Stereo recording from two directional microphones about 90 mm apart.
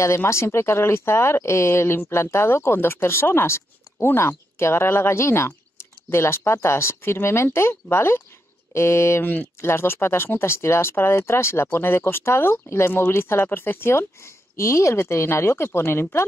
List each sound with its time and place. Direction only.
0.0 s speech: 30° left (ahead or behind)